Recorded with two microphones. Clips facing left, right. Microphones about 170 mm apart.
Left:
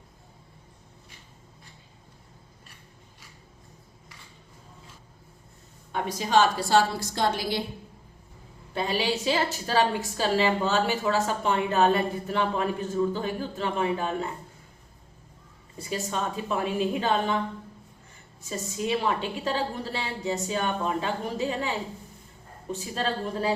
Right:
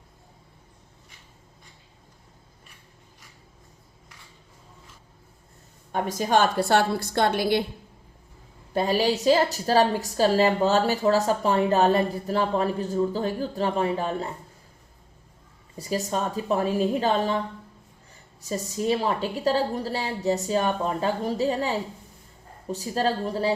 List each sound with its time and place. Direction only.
5.9 s a woman's voice: 45° right (ahead or behind)
8.7 s a woman's voice: 45° right (ahead or behind)
16.0 s a woman's voice: 40° right (ahead or behind)
18.4 s a woman's voice: 40° right (ahead or behind)